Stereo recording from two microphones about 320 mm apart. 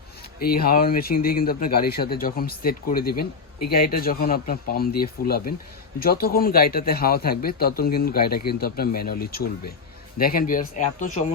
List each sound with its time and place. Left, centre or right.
0.3 s speech: left